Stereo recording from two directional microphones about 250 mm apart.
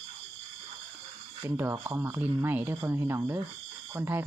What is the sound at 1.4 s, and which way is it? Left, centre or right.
Speech, centre.